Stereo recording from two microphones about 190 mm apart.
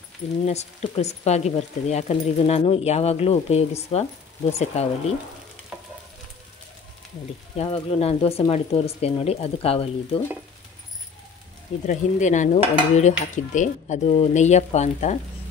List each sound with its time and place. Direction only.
0.5 s speech: 35° left (ahead or behind)
7.5 s speech: 30° left (ahead or behind)
11.8 s speech: 40° left (ahead or behind)